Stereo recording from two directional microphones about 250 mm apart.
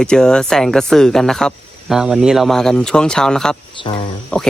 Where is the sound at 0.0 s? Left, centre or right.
Centre.